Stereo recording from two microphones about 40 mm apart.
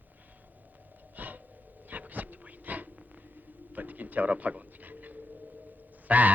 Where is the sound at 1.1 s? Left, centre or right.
Right.